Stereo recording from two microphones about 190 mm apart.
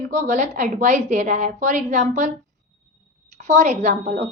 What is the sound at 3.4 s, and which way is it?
Speech, 35° right (ahead or behind).